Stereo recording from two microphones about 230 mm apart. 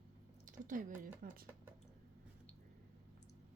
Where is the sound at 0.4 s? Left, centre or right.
Right.